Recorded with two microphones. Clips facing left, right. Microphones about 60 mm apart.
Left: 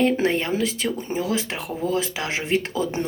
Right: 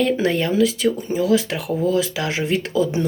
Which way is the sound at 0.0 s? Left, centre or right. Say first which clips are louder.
Right 1 dB; left.